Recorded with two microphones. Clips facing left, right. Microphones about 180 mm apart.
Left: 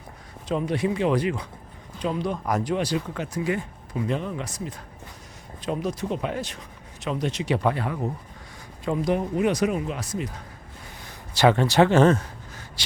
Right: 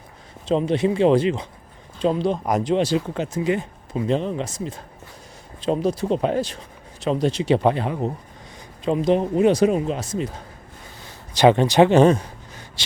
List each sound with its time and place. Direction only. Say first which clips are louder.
0.4 s speech: right 5 dB; 25° right (ahead or behind)